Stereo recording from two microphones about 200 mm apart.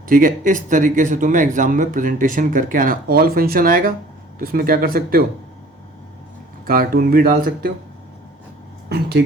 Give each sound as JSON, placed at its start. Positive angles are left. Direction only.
{"t": 0.1, "sound": "speech", "side_deg": -40}
{"t": 6.7, "sound": "speech", "side_deg": -45}